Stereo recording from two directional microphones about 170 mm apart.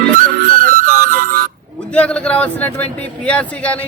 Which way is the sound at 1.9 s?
5° left (ahead or behind).